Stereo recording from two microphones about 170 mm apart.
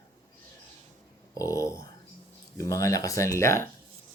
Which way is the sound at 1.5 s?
20° left (ahead or behind).